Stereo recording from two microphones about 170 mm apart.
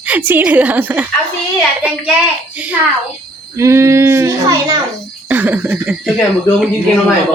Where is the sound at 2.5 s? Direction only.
10° right (ahead or behind).